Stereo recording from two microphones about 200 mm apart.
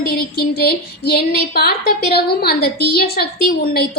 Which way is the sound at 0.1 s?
50° left (ahead or behind).